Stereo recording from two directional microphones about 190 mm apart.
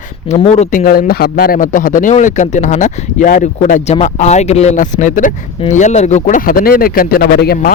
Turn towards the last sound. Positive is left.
turn(degrees=55)  # may be behind; listen again after turning